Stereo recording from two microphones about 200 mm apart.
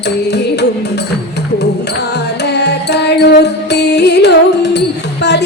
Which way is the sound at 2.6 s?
55° left (ahead or behind).